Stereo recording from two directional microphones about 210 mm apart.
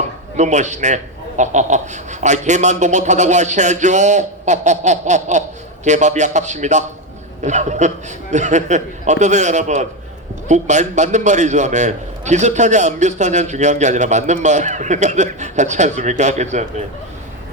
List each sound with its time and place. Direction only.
0.3 s a man's voice: 35° right (ahead or behind)